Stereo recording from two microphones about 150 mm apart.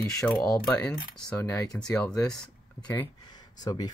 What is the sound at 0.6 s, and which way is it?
Speech, 10° left (ahead or behind).